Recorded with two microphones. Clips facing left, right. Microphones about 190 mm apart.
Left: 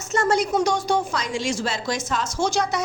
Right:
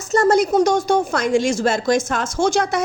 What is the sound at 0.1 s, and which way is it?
A woman's voice, 40° right (ahead or behind).